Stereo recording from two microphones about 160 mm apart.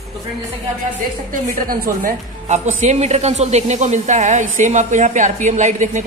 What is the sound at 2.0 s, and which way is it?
Speech, 50° right (ahead or behind).